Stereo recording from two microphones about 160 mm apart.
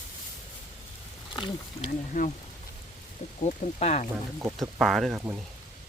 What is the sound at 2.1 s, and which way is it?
Speech, 55° left (ahead or behind).